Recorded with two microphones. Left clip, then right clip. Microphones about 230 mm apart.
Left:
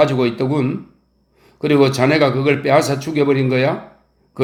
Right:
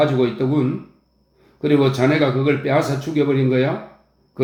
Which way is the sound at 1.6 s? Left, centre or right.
Left.